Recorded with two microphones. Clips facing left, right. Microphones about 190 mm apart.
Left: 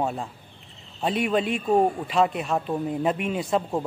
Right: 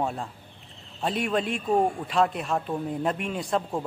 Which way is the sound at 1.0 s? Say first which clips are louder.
Left 3 dB; centre (ahead or behind).